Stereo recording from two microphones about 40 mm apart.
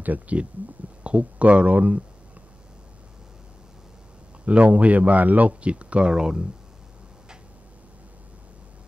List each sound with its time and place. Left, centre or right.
0.0 s speech: right
4.5 s speech: right
6.0 s speech: right